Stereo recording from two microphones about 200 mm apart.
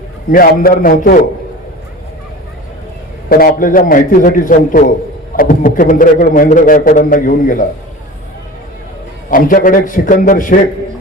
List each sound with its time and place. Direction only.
0.3 s a man's voice: 45° left (ahead or behind)
3.2 s a man's voice: 45° left (ahead or behind)
9.3 s a man's voice: 45° left (ahead or behind)